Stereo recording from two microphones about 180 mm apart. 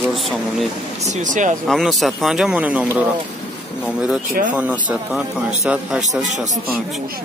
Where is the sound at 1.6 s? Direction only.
Centre (ahead or behind).